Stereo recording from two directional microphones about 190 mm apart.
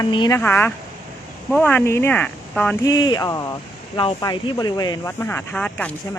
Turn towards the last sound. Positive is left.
turn(degrees=5)  # may be behind; listen again after turning